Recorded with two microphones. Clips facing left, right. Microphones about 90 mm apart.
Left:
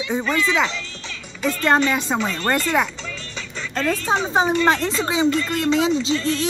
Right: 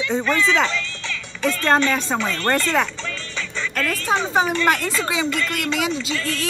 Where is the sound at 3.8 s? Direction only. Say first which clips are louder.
Left 1 dB; 25° left (ahead or behind).